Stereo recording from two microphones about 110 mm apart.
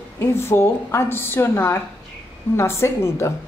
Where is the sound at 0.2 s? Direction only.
20° left (ahead or behind).